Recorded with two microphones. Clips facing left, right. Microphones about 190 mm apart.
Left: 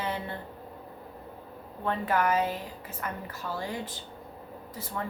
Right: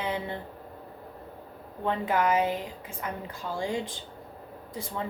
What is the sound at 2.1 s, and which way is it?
A woman's voice, 15° right (ahead or behind).